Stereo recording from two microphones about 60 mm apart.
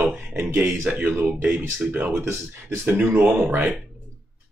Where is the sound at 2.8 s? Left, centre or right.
Right.